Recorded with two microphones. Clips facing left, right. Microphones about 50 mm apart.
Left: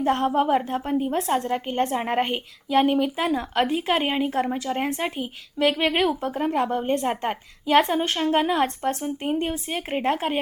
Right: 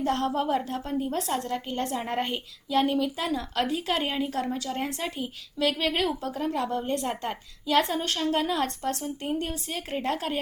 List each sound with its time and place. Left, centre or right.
0.0 s a woman's voice: left